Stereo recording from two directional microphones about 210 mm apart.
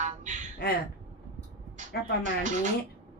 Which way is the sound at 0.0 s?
35° right (ahead or behind).